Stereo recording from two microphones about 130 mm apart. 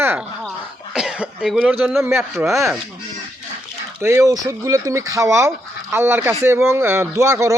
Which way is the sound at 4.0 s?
25° right (ahead or behind).